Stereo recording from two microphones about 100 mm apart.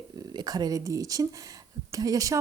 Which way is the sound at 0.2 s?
40° right (ahead or behind).